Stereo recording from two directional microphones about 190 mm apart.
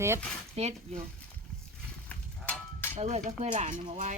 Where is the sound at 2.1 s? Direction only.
10° left (ahead or behind).